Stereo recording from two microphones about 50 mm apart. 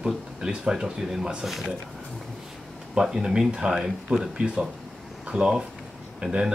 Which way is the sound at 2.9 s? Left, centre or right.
Centre.